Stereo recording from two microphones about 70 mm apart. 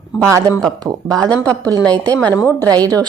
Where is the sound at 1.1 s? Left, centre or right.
Centre.